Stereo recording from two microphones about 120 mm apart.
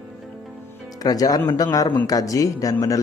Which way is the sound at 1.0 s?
30° left (ahead or behind).